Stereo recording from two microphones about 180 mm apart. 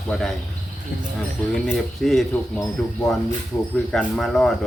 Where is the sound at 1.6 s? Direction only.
Centre (ahead or behind).